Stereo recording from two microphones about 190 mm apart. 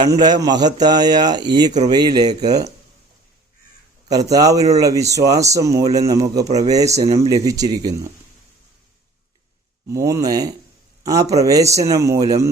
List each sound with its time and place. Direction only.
0.1 s speech: 20° right (ahead or behind)
4.1 s speech: 20° right (ahead or behind)
9.9 s speech: 15° right (ahead or behind)